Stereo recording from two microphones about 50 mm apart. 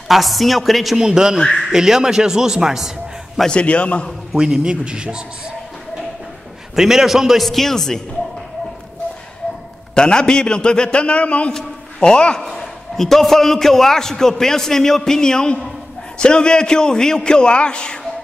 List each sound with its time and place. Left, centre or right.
0.1 s a man's voice: centre
0.9 s a man's voice: centre
3.4 s a man's voice: left
4.4 s a man's voice: centre
6.7 s a man's voice: centre
9.9 s a man's voice: centre
12.4 s a man's voice: centre